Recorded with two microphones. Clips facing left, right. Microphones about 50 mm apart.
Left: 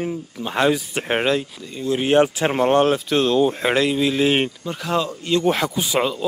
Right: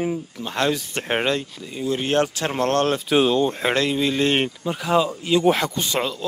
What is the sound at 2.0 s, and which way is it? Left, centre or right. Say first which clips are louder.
Speech: left 6 dB; centre.